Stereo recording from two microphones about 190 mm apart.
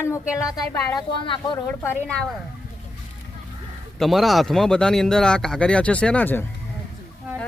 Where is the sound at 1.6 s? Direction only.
10° left (ahead or behind).